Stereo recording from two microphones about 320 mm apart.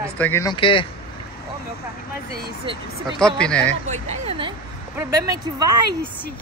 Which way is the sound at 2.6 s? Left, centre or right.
Centre.